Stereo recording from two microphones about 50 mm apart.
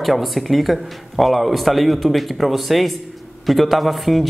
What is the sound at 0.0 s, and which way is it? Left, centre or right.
A woman's voice, centre.